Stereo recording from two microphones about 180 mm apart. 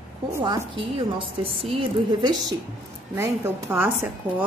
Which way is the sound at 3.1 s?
15° right (ahead or behind).